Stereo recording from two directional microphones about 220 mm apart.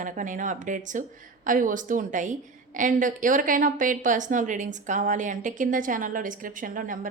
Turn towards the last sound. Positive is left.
turn(degrees=-40)  # may be behind; listen again after turning